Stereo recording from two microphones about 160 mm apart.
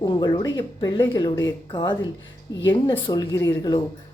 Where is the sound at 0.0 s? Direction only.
25° left (ahead or behind).